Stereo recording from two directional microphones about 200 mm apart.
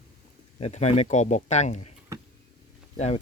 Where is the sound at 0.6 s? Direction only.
35° left (ahead or behind).